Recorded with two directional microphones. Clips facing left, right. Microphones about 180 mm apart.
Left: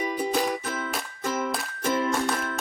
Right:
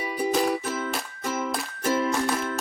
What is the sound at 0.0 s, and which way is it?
Music, 5° right (ahead or behind).